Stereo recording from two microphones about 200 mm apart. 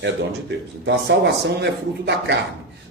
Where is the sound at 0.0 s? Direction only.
60° right (ahead or behind).